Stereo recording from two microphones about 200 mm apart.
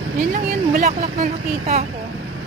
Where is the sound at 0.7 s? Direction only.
35° right (ahead or behind).